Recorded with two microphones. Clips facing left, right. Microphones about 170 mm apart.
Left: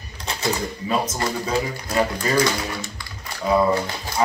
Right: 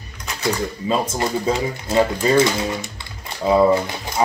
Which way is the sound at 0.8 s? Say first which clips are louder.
Right 2 dB; 20° right (ahead or behind).